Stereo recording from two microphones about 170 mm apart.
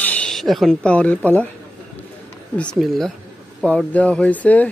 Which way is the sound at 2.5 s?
5° left (ahead or behind).